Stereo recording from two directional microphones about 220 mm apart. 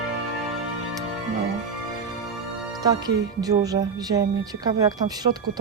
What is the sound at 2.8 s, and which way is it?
Speech, 15° right (ahead or behind).